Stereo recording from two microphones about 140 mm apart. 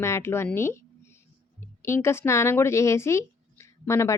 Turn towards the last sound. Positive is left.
turn(degrees=20)  # may be behind; listen again after turning